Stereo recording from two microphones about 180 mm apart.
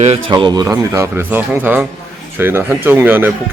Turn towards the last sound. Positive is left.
turn(degrees=-10)  # may be behind; listen again after turning